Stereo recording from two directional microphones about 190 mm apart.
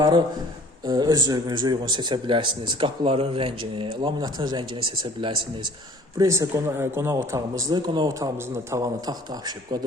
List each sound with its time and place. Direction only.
0.9 s a man's voice: 20° right (ahead or behind)